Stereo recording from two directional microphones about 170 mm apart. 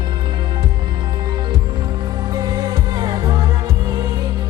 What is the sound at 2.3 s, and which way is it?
Music, 25° right (ahead or behind).